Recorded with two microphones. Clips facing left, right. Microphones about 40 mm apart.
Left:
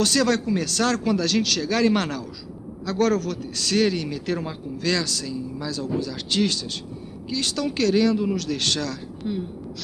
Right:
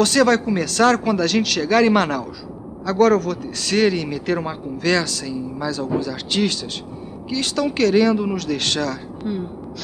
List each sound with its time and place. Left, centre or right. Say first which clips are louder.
0.0 s a man's voice: right 5 dB; right